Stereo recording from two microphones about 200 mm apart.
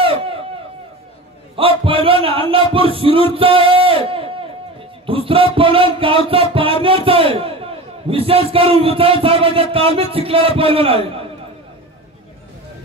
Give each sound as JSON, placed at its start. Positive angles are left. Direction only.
{"t": 0.0, "sound": "run", "side_deg": -30}
{"t": 1.6, "sound": "music", "side_deg": -25}